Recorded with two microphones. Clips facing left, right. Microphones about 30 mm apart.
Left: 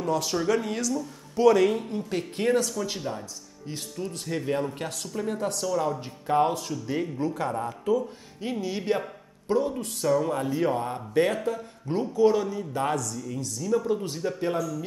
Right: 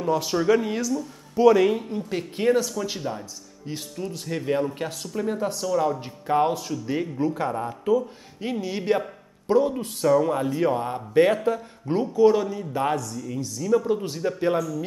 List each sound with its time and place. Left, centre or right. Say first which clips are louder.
0.0 s speech: right 3 dB; centre